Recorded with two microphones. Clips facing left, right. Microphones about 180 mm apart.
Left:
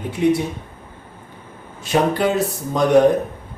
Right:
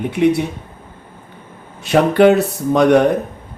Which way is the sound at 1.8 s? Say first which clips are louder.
Right 7 dB; 65° right (ahead or behind).